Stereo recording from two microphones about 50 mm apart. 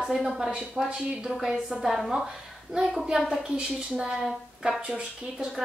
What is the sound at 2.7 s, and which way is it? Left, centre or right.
A woman's voice, centre.